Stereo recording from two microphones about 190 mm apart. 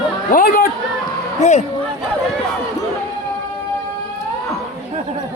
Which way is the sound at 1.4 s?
35° left (ahead or behind).